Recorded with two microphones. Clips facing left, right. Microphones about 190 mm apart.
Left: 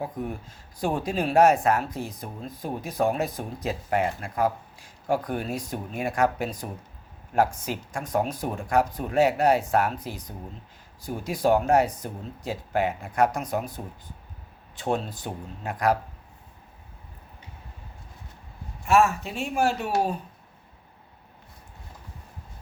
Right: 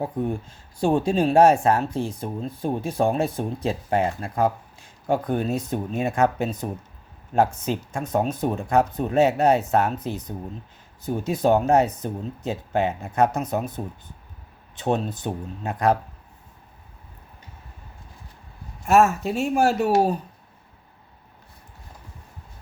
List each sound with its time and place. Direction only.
0.0 s speech: 30° right (ahead or behind)
18.9 s speech: 45° right (ahead or behind)